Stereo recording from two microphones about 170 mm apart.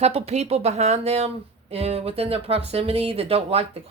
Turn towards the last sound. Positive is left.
turn(degrees=-35)  # may be behind; listen again after turning